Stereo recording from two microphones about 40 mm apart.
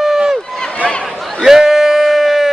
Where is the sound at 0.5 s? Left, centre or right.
Centre.